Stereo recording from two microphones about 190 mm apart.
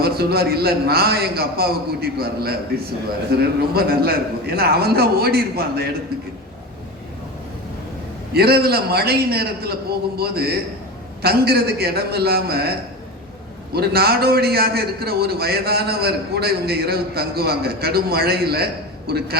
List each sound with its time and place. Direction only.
0.0 s a man's voice: 55° right (ahead or behind)
8.3 s a man's voice: 55° right (ahead or behind)
13.7 s a man's voice: 55° right (ahead or behind)